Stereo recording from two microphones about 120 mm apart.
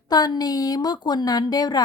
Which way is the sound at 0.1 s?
35° left (ahead or behind).